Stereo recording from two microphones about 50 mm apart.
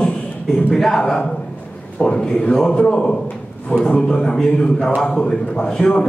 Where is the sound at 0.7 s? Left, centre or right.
Centre.